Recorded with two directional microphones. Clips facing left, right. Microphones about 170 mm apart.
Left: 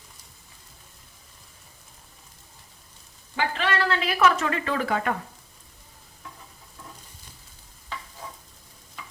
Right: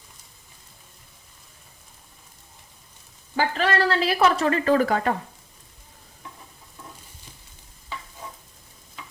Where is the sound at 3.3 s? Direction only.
40° right (ahead or behind).